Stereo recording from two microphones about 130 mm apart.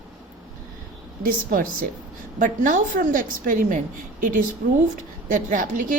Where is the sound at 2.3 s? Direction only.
85° right.